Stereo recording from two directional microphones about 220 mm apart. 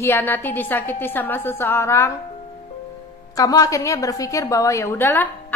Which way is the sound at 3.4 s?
15° left (ahead or behind).